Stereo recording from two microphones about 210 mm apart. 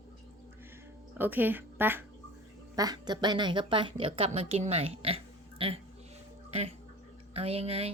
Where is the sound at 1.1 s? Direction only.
10° right (ahead or behind).